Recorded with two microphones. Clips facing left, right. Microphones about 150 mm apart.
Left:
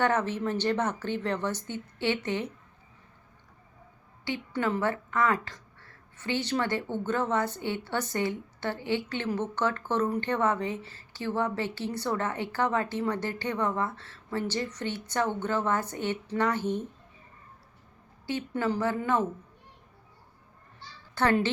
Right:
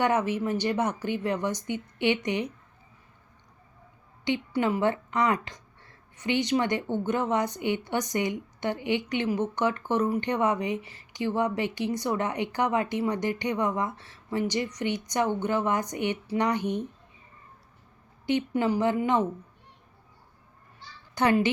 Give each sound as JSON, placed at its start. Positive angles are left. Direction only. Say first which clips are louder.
{"t": 0.0, "sound": "speech", "louder": "right 2 dB", "side_deg": -10}
{"t": 4.3, "sound": "speech", "louder": "right 3 dB", "side_deg": -15}
{"t": 18.3, "sound": "speech", "louder": "right 4 dB", "side_deg": -20}
{"t": 21.2, "sound": "speech", "louder": "right 2 dB", "side_deg": -15}